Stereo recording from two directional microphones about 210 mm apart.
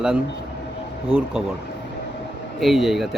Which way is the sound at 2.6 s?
Centre (ahead or behind).